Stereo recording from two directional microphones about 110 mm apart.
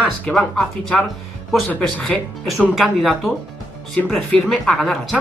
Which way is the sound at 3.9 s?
10° left (ahead or behind).